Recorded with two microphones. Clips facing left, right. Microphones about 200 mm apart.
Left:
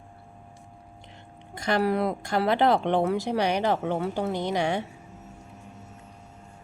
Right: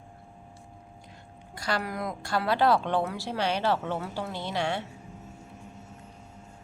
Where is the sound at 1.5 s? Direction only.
20° left (ahead or behind).